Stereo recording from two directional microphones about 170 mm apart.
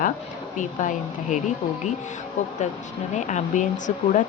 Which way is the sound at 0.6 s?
45° left (ahead or behind).